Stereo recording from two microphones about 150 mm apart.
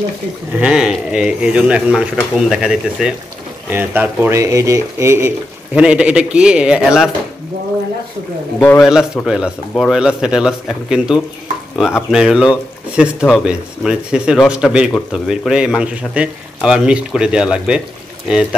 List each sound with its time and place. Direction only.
0.6 s speech: 5° right (ahead or behind)
8.5 s a man's voice: 15° left (ahead or behind)
9.2 s speech: centre (ahead or behind)